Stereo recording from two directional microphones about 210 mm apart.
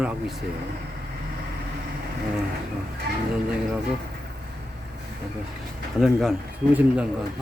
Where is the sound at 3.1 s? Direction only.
45° right (ahead or behind).